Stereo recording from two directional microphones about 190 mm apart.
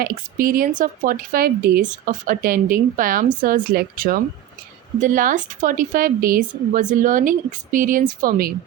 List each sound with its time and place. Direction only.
0.3 s a woman's voice: 50° right (ahead or behind)